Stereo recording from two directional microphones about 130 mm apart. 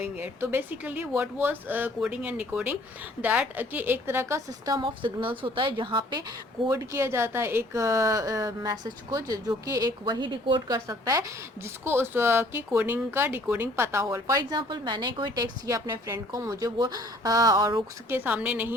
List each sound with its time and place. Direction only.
0.0 s speech: 15° right (ahead or behind)
4.8 s a woman's voice: 40° right (ahead or behind)
6.7 s speech: 20° right (ahead or behind)
18.1 s speech: 15° right (ahead or behind)